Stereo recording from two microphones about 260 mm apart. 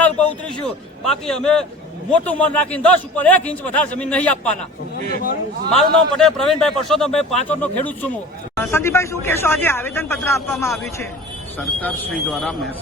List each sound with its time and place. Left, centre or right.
0.0 s a sound: centre
1.2 s a man's voice: centre
4.9 s a man's voice: right
5.7 s a man's voice: centre